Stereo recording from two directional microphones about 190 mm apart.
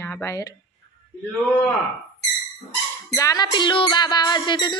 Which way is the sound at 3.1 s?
20° left (ahead or behind).